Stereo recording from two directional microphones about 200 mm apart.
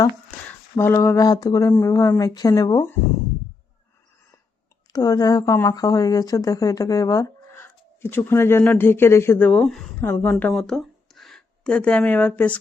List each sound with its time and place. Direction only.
0.8 s speech: 15° left (ahead or behind)
4.9 s speech: 20° left (ahead or behind)